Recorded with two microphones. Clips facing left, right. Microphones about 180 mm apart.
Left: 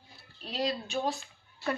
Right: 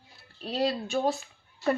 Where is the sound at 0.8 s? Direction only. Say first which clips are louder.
Right 5 dB; 50° right (ahead or behind).